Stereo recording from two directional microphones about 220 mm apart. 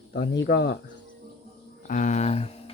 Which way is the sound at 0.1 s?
45° left (ahead or behind).